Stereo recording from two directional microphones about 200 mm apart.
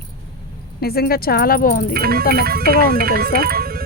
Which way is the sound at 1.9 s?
50° right (ahead or behind).